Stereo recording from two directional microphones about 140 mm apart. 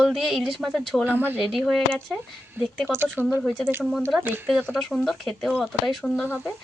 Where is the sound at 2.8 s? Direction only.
15° right (ahead or behind).